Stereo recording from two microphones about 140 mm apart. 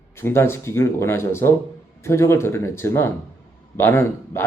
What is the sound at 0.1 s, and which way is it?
Speech, 20° left (ahead or behind).